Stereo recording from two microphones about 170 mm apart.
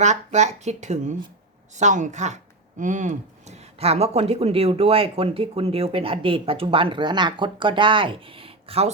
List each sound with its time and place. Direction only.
0.0 s speech: 45° right (ahead or behind)